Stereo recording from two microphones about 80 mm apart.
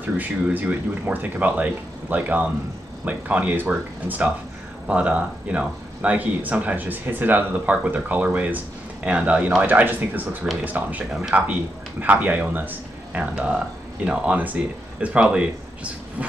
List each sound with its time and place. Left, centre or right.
0.2 s speech: right